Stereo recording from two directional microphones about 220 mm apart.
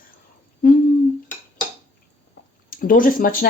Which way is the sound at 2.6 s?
40° left (ahead or behind).